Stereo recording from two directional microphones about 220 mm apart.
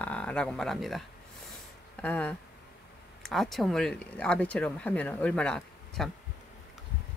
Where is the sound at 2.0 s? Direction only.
5° left (ahead or behind).